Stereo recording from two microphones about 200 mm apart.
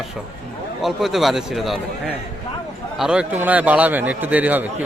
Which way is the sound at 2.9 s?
5° right (ahead or behind).